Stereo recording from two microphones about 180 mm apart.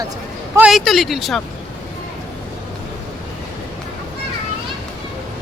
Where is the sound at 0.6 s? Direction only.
Centre (ahead or behind).